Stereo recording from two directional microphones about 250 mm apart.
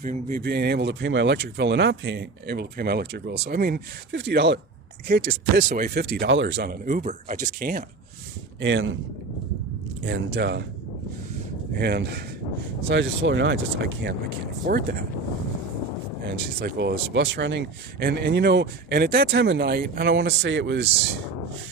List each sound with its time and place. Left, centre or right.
0.0 s speech: right
8.6 s speech: right
10.3 s speech: right
11.8 s speech: right
14.7 s speech: right
16.3 s speech: right